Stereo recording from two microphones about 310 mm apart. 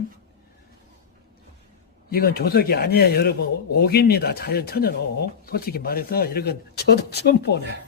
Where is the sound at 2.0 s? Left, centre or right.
Left.